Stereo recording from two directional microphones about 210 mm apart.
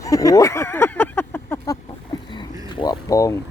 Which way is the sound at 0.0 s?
15° left (ahead or behind).